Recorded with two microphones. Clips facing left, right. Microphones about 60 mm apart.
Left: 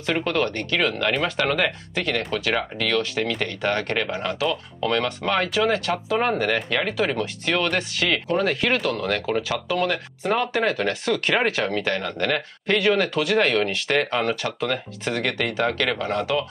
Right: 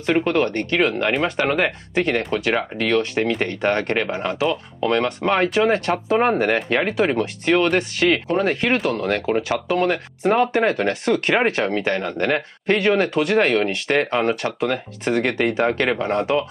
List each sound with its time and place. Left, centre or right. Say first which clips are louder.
0.0 s a man's voice: right 4 dB; right